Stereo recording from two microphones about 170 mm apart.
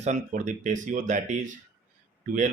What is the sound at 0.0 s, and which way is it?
Speech, 45° right (ahead or behind).